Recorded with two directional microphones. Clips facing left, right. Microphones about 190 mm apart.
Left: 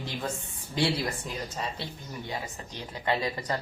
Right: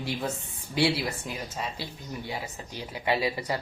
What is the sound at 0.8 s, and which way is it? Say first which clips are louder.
Speech: right 2 dB; 5° right (ahead or behind).